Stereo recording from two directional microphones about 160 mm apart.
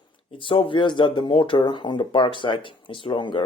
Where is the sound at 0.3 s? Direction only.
35° left (ahead or behind).